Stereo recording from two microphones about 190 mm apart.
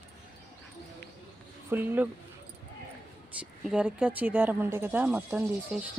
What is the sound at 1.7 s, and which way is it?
Speech, 10° right (ahead or behind).